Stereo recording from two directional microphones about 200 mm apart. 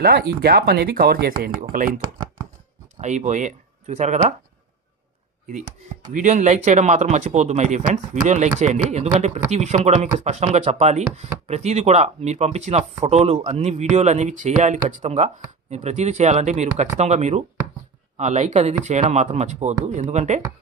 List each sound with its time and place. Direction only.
0.0 s speech: 50° right (ahead or behind)
3.0 s speech: 35° right (ahead or behind)
6.1 s speech: 35° right (ahead or behind)